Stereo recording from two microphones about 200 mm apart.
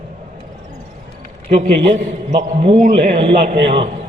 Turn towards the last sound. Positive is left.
turn(degrees=-25)  # may be behind; listen again after turning